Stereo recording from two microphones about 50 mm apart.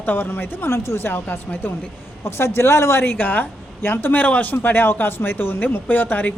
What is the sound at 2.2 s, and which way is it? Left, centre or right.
Speech, left.